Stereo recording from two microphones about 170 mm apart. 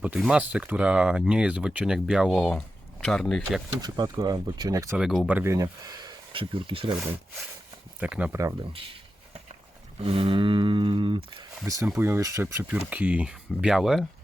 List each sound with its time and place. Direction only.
0.0 s speech: 5° right (ahead or behind)
3.8 s a sound: 25° right (ahead or behind)
4.9 s speech: centre (ahead or behind)
5.4 s speech: 20° right (ahead or behind)
7.9 s speech: 5° right (ahead or behind)
8.7 s speech: 30° right (ahead or behind)
10.0 s a sound: 35° right (ahead or behind)
11.6 s speech: 15° right (ahead or behind); by 14.1 s centre (ahead or behind)